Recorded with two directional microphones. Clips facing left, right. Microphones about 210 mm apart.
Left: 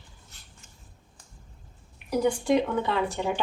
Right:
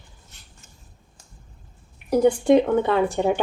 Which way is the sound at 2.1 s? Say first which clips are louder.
Right 7 dB; 50° right (ahead or behind).